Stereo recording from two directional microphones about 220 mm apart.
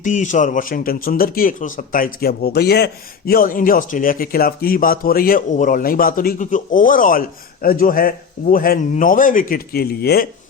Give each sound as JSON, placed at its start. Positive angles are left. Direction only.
{"t": 0.0, "sound": "speech", "side_deg": 35}